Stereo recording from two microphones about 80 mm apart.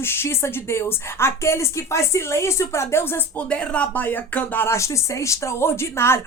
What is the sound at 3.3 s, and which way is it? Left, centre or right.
Speech, centre.